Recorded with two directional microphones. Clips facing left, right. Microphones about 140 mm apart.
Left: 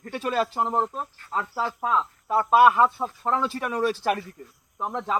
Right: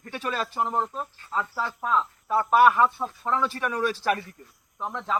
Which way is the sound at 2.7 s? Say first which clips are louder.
Left 1 dB; 10° left (ahead or behind).